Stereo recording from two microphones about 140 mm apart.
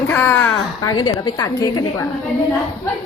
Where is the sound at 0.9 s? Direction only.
30° left (ahead or behind).